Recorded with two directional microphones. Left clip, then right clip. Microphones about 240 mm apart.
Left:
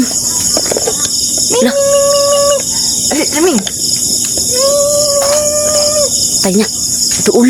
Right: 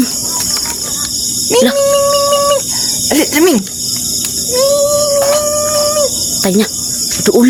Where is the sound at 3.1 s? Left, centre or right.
Right.